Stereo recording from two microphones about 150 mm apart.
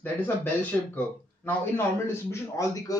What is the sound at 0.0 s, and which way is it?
A man's voice, 10° left (ahead or behind).